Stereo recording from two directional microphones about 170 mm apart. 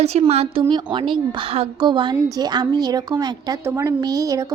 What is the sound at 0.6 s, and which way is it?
A woman's voice, 25° right (ahead or behind).